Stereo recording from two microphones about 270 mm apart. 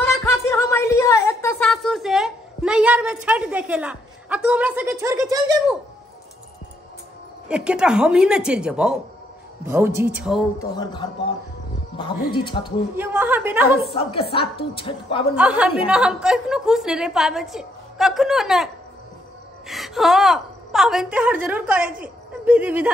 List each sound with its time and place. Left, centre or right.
0.2 s a sound: centre
7.4 s a woman's voice: centre
10.8 s speech: centre
12.9 s a woman's voice: centre
13.8 s a woman's voice: centre
15.3 s a woman's voice: centre
19.7 s a woman's voice: centre